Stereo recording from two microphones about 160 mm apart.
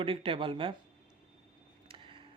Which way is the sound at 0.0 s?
35° right (ahead or behind).